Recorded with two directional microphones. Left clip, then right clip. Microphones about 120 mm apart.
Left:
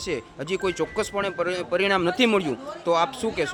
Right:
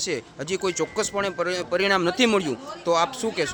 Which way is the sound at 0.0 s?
5° left (ahead or behind).